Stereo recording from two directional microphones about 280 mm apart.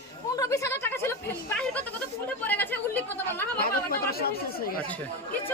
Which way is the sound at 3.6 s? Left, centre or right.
Left.